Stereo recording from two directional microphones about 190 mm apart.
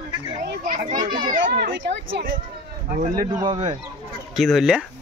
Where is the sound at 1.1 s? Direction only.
45° right (ahead or behind).